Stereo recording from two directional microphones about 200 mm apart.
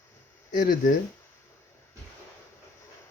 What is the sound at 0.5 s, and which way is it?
Speech, 45° left (ahead or behind).